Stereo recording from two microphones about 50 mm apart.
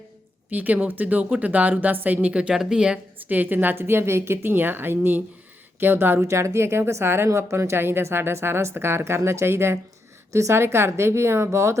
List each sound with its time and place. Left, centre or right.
0.5 s a woman's voice: right; by 3.0 s centre
3.2 s speech: right
3.8 s a woman's voice: right
4.4 s speech: right
6.2 s a woman's voice: right
7.3 s a woman's voice: right
10.3 s a woman's voice: right